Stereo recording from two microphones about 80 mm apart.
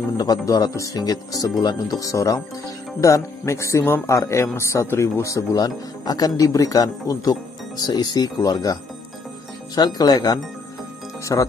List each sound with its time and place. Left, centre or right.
0.2 s speech: left
9.8 s speech: left